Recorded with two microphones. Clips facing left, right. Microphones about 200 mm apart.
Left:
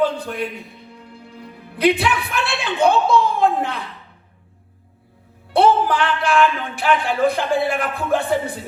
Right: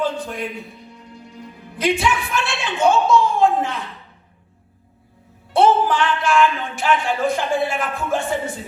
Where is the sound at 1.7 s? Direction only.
60° left (ahead or behind).